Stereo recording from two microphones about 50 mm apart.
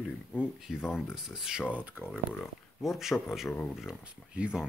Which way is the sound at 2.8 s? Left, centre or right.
Centre.